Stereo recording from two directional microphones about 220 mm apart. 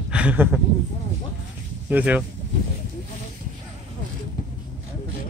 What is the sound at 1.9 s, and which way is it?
Speech, 5° right (ahead or behind).